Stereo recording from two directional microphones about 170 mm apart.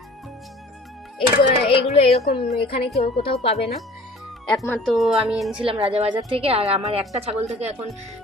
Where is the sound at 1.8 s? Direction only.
40° left (ahead or behind).